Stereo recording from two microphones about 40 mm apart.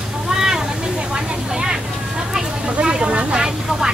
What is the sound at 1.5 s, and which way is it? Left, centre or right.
Vehicle, right.